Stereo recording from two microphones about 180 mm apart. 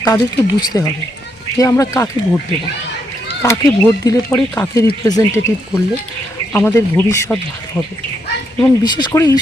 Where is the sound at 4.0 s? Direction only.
20° left (ahead or behind).